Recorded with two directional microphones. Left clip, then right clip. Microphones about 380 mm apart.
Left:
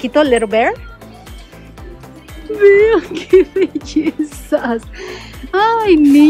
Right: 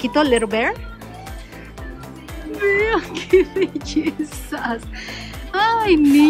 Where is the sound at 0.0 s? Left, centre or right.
Centre.